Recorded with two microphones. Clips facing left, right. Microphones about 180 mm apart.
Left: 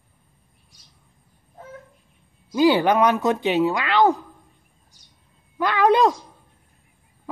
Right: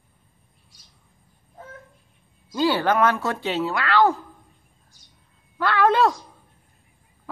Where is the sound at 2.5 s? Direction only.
15° left (ahead or behind).